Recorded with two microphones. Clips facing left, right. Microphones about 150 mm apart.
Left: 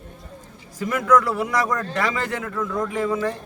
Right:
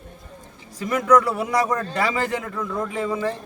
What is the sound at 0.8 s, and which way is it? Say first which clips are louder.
A man's voice: right 1 dB; 5° left (ahead or behind).